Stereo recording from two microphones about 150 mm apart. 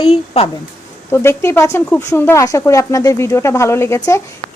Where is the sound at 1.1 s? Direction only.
15° left (ahead or behind).